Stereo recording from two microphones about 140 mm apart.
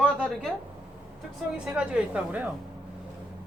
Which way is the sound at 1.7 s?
5° right (ahead or behind).